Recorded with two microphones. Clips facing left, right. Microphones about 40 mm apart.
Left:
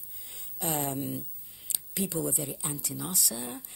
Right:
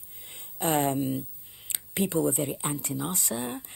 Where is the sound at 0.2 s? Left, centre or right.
Right.